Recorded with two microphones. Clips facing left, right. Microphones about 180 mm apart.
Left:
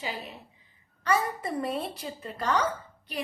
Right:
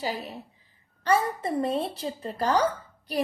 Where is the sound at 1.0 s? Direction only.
30° right (ahead or behind).